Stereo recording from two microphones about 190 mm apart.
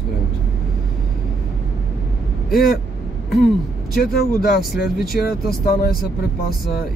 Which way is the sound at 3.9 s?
50° left (ahead or behind).